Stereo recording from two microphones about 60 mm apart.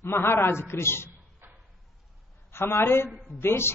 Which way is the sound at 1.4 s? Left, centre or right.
Right.